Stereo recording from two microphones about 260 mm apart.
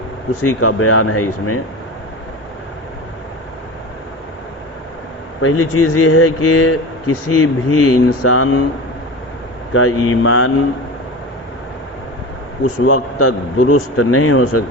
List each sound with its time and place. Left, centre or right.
0.4 s speech: left
5.4 s speech: left
9.7 s speech: left
12.8 s speech: left